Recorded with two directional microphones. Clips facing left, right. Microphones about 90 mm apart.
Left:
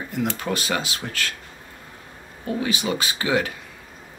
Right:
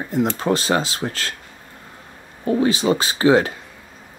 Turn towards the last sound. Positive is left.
turn(degrees=-30)  # may be behind; listen again after turning